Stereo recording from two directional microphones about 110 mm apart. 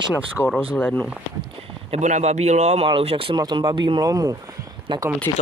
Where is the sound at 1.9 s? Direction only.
90° right.